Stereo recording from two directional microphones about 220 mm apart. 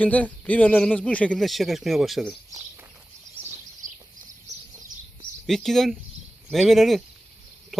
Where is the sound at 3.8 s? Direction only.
35° right (ahead or behind).